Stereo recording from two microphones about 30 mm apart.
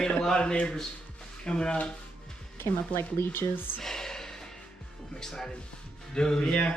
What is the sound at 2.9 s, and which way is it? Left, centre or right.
Speech, left.